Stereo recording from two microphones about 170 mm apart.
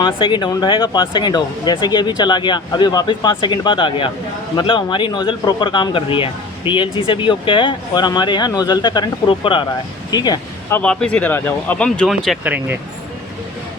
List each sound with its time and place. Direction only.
0.0 s speech: 25° left (ahead or behind)
10.8 s speech: 5° left (ahead or behind)
12.5 s speech: 10° right (ahead or behind)